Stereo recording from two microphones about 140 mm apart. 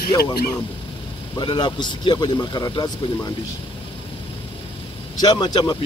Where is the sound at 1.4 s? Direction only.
30° left (ahead or behind).